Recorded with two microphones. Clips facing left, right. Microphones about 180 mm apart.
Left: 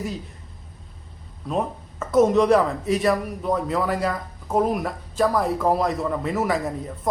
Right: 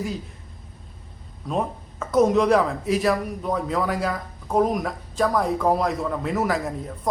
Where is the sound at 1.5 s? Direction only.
Centre (ahead or behind).